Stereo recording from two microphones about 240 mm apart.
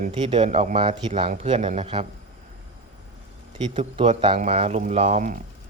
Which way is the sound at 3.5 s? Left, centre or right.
Right.